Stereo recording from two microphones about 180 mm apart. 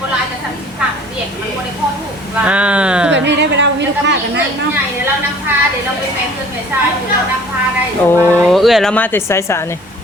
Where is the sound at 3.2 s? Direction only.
75° right (ahead or behind).